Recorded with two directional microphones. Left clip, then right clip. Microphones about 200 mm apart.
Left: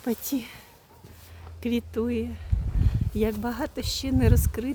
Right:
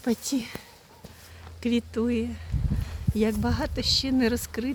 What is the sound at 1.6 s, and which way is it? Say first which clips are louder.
Speech: right 1 dB; centre (ahead or behind).